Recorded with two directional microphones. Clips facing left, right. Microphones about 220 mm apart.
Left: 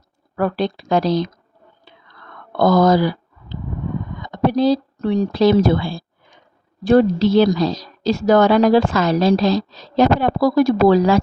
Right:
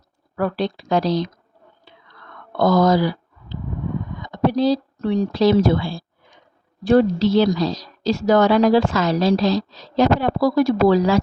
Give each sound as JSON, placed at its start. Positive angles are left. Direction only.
{"t": 0.3, "sound": "a woman's voice", "side_deg": 50}
{"t": 2.6, "sound": "a woman's voice", "side_deg": 55}
{"t": 4.2, "sound": "a woman's voice", "side_deg": 55}